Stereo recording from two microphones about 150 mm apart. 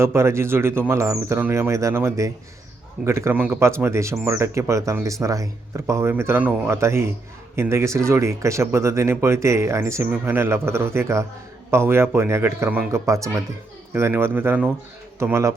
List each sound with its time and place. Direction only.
0.0 s speech: 15° right (ahead or behind)